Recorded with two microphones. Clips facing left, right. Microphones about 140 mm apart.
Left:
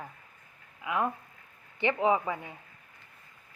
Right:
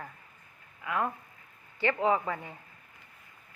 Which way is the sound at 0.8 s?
15° left (ahead or behind).